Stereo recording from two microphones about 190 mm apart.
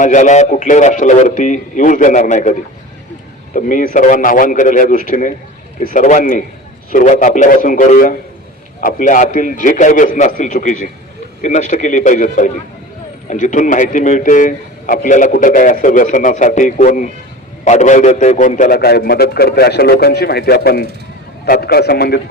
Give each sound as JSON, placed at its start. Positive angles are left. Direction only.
{"t": 0.0, "sound": "a man's voice", "side_deg": 40}